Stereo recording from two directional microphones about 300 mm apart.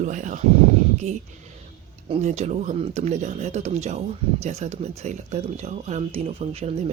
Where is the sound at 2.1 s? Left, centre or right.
Right.